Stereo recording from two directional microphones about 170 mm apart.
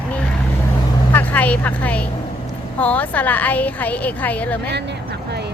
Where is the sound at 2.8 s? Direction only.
10° left (ahead or behind).